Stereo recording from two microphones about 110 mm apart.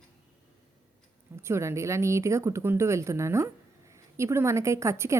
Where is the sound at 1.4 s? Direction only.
25° right (ahead or behind).